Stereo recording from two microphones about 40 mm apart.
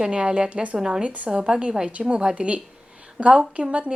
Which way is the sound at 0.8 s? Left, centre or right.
Centre.